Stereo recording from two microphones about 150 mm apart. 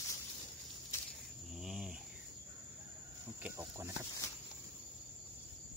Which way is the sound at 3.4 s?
15° right (ahead or behind).